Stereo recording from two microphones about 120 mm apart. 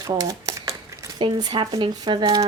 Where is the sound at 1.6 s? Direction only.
45° right (ahead or behind).